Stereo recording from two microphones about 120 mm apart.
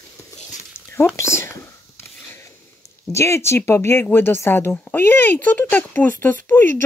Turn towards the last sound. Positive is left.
turn(degrees=15)  # may be behind; listen again after turning